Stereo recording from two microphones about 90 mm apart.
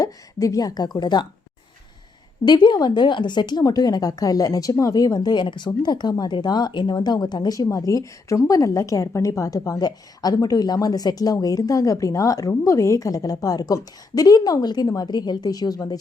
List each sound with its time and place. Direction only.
0.0 s a sound: 40° left (ahead or behind)
0.9 s speech: 55° left (ahead or behind)
2.4 s a woman's voice: 55° left (ahead or behind)
3.6 s speech: 40° left (ahead or behind)